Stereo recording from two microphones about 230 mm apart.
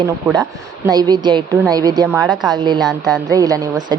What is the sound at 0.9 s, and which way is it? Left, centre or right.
Speech, centre.